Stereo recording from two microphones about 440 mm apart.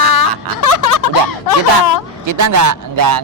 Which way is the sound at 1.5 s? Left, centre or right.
Left.